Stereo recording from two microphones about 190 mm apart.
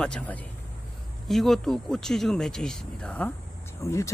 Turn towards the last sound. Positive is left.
turn(degrees=15)  # may be behind; listen again after turning